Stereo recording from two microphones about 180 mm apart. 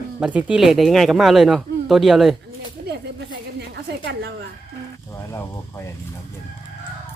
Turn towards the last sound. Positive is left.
turn(degrees=15)  # may be behind; listen again after turning